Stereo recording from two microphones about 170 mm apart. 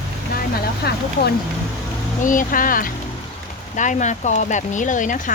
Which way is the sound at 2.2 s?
50° left (ahead or behind).